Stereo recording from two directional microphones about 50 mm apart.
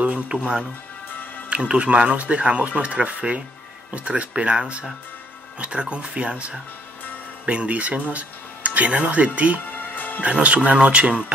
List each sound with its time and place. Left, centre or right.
0.0 s speech: right
9.7 s music: left
10.2 s speech: right